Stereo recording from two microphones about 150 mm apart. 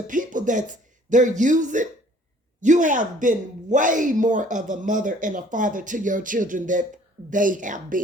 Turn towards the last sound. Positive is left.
turn(degrees=-60)  # may be behind; listen again after turning